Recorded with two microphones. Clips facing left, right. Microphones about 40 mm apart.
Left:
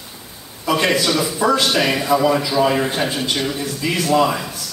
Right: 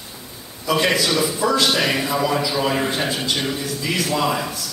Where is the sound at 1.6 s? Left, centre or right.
Centre.